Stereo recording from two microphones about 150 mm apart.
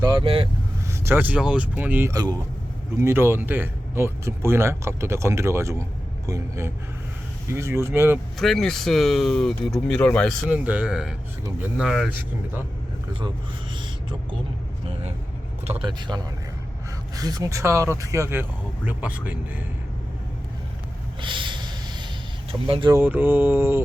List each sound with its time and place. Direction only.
0.0 s speech: 40° right (ahead or behind)
0.9 s speech: 15° right (ahead or behind)
2.1 s speech: 25° right (ahead or behind)
8.4 s speech: centre (ahead or behind)
10.5 s speech: 10° right (ahead or behind)
15.8 s speech: 30° right (ahead or behind); by 19.6 s 10° right (ahead or behind)
21.2 s snort: 30° right (ahead or behind)
22.6 s speech: 35° right (ahead or behind)
23.0 s speech: 15° right (ahead or behind)